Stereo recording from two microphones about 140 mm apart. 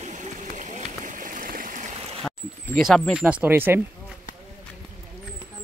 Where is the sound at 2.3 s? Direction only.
5° left (ahead or behind).